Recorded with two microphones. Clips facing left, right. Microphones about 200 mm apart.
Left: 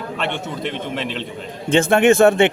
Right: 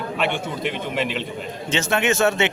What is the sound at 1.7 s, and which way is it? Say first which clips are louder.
Speech: left 8 dB; 55° left (ahead or behind).